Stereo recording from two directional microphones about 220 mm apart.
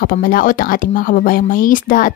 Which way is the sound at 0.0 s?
40° left (ahead or behind).